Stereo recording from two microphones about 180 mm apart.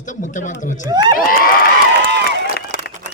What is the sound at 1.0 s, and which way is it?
Speech, 55° left (ahead or behind).